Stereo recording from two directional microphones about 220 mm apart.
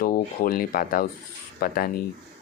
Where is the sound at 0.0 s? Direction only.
40° left (ahead or behind).